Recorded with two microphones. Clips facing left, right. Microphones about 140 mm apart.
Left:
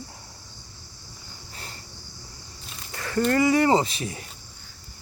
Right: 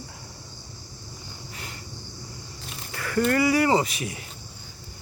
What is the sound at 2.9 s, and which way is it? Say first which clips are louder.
Speech: even; 25° left (ahead or behind).